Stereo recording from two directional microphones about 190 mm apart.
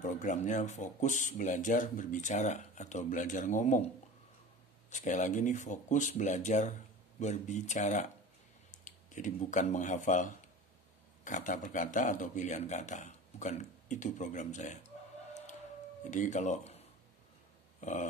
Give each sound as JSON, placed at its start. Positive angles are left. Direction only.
{"t": 0.0, "sound": "speech", "side_deg": 40}
{"t": 4.8, "sound": "speech", "side_deg": 40}
{"t": 16.0, "sound": "speech", "side_deg": 40}
{"t": 17.7, "sound": "dog", "side_deg": 40}